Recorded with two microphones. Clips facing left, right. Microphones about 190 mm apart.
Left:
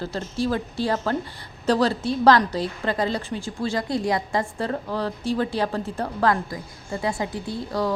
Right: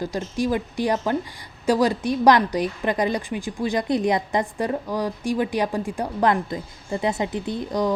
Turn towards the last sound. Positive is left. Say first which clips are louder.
# right 2 dB
turn(degrees=-20)  # may be behind; listen again after turning